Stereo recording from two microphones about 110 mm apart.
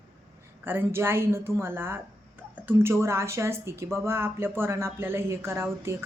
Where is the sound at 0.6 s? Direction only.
20° right (ahead or behind).